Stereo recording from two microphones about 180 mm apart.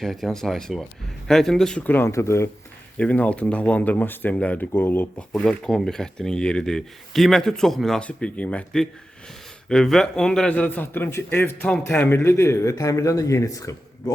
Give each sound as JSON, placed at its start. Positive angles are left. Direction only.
{"t": 0.0, "sound": "a man's voice", "side_deg": 0}